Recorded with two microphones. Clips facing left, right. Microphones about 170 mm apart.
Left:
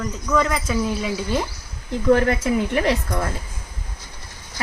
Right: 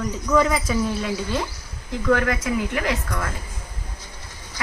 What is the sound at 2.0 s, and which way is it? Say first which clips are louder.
A woman's voice: left 4 dB; 30° left (ahead or behind).